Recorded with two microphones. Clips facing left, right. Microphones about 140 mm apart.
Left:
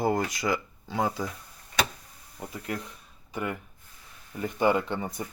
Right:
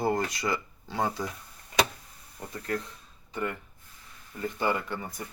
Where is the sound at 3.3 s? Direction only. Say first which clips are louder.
Even; 15° left (ahead or behind).